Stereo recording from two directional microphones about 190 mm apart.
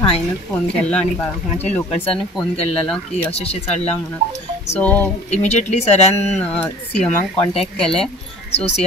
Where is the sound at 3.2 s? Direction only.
30° left (ahead or behind).